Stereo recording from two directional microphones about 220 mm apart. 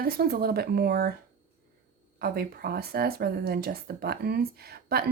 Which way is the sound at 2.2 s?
45° right (ahead or behind).